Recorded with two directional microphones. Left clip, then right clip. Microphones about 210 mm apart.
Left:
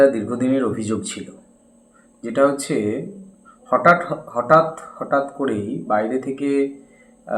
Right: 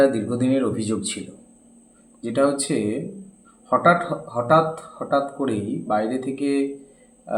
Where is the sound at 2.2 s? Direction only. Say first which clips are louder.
Left 3 dB; centre (ahead or behind).